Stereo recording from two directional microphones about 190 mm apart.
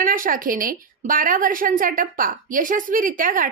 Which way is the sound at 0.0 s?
45° right (ahead or behind).